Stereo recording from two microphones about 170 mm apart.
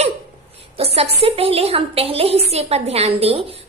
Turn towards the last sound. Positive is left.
turn(degrees=-35)  # may be behind; listen again after turning